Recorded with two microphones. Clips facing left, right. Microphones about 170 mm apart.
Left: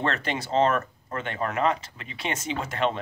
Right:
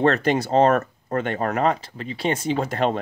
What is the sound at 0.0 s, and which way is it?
Speech, 40° right (ahead or behind).